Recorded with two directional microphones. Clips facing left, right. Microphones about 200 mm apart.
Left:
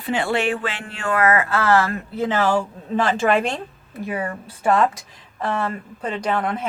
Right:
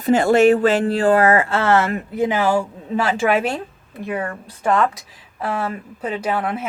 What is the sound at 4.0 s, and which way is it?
A woman's voice, 5° left (ahead or behind).